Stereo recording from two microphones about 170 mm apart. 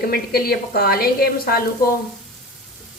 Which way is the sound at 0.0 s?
65° left (ahead or behind).